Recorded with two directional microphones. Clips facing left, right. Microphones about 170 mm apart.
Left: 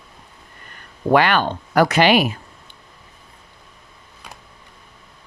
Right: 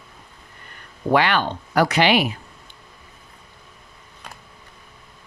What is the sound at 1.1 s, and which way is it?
Speech, 50° left (ahead or behind).